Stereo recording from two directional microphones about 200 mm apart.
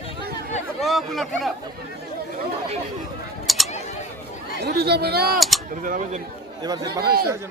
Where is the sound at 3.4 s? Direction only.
Centre (ahead or behind).